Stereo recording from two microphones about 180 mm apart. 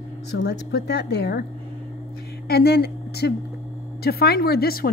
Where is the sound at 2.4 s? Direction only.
60° left (ahead or behind).